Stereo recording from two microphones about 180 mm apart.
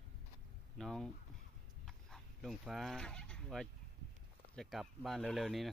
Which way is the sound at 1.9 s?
Centre (ahead or behind).